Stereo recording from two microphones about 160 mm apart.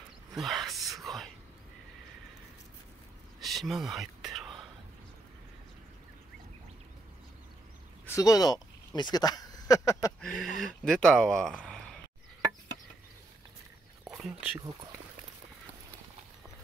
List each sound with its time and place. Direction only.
0.3 s a sound: centre (ahead or behind)
1.0 s whispering: centre (ahead or behind)
3.3 s whispering: centre (ahead or behind)
8.0 s speech: 20° left (ahead or behind)
10.2 s speech: centre (ahead or behind)
14.1 s speech: 10° right (ahead or behind)